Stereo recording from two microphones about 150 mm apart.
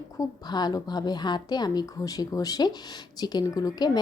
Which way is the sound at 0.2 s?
25° left (ahead or behind).